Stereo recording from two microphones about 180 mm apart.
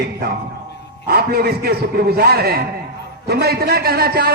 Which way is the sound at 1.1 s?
60° right (ahead or behind).